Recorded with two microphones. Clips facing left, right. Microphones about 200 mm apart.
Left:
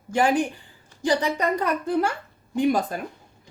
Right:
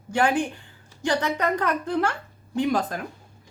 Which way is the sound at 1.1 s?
10° left (ahead or behind).